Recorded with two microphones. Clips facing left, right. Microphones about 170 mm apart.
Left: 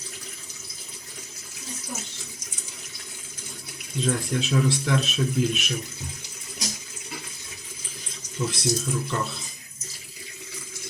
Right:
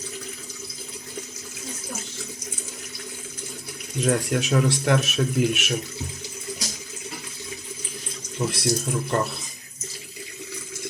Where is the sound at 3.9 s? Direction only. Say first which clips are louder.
Right 3 dB; 70° right (ahead or behind).